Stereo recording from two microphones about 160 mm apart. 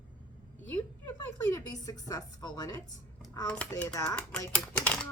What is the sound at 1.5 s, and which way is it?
Speech, 20° left (ahead or behind).